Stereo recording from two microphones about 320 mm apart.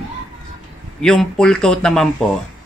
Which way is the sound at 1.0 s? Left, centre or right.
Centre.